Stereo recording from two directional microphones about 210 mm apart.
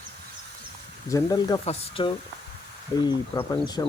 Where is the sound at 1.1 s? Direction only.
15° left (ahead or behind).